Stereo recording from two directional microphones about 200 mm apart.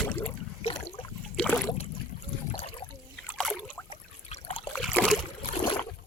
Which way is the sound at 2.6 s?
30° left (ahead or behind).